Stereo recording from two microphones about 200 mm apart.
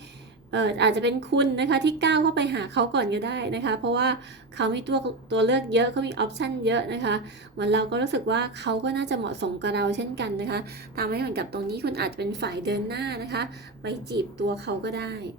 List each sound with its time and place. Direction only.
0.5 s speech: 60° right (ahead or behind)